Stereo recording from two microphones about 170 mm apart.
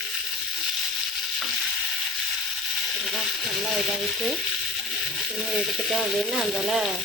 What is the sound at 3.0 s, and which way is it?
Frying, centre (ahead or behind).